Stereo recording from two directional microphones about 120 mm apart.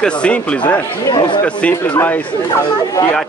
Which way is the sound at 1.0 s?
40° left (ahead or behind).